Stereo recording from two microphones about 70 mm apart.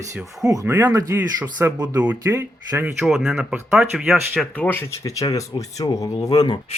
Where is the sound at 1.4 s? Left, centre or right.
Right.